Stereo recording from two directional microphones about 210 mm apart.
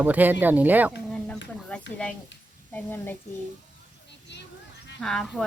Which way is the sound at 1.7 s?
10° left (ahead or behind).